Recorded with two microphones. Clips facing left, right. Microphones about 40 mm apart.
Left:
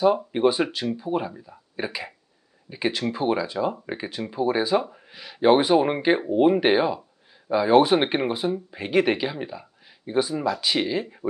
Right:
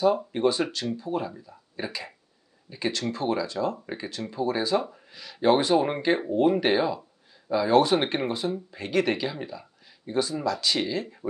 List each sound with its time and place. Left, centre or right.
0.3 s speech: centre